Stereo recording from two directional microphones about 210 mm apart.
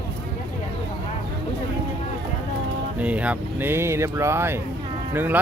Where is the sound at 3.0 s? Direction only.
5° right (ahead or behind).